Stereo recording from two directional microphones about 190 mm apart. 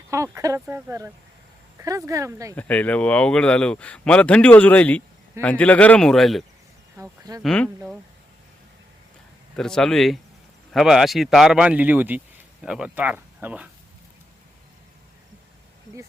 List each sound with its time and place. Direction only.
0.1 s speech: 15° right (ahead or behind)
2.6 s speech: 10° left (ahead or behind)
6.9 s speech: 15° right (ahead or behind)
7.4 s speech: 5° left (ahead or behind)
9.6 s speech: 5° left (ahead or behind)